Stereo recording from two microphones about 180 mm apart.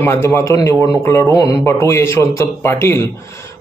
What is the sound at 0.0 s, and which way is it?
A man's voice, 10° left (ahead or behind).